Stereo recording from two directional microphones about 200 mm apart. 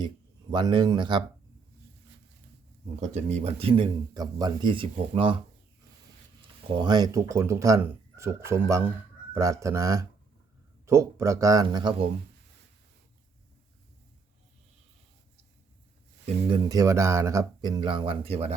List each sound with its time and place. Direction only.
0.5 s speech: 20° right (ahead or behind)
3.2 s speech: 35° right (ahead or behind)
6.7 s speech: 20° right (ahead or behind)
16.2 s speech: 20° right (ahead or behind)